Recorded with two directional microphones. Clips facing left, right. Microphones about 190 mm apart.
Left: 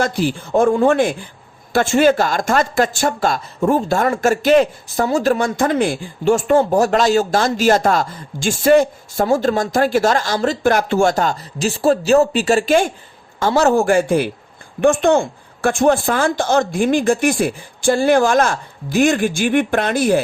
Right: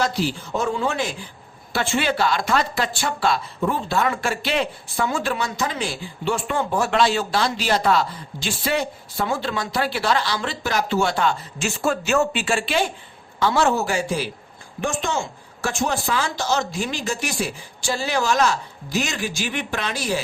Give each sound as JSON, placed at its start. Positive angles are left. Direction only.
{"t": 0.0, "sound": "speech", "side_deg": 50}